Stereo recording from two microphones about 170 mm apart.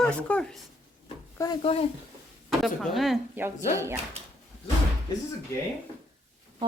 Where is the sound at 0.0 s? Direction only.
5° left (ahead or behind).